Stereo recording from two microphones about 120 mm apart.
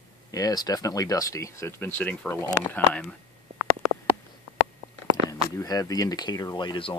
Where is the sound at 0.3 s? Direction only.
30° left (ahead or behind).